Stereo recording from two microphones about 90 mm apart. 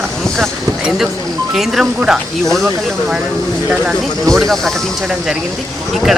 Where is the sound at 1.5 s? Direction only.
Centre (ahead or behind).